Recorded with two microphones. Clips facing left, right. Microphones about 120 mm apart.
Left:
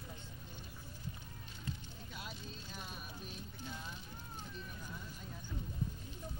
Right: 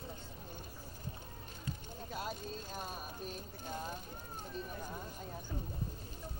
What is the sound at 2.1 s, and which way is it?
Speech, 45° right (ahead or behind).